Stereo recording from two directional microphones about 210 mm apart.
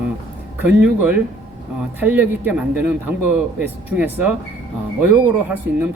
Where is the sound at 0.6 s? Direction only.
5° right (ahead or behind).